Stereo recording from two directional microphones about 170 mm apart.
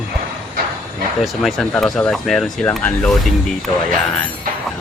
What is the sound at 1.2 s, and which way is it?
Speech, centre (ahead or behind).